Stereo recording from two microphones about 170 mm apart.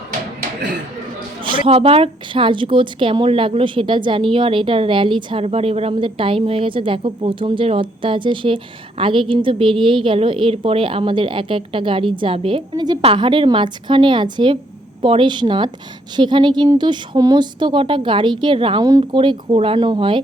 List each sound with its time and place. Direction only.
1.5 s speech: 30° right (ahead or behind)